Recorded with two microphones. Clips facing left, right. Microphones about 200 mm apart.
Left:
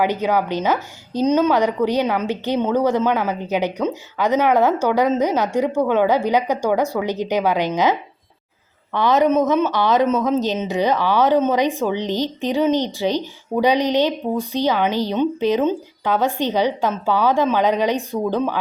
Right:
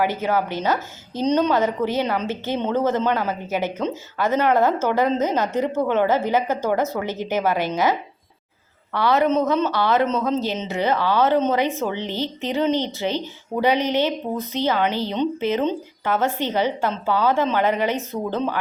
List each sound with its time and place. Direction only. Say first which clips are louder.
0.0 s a woman's voice: left 2 dB; 15° left (ahead or behind)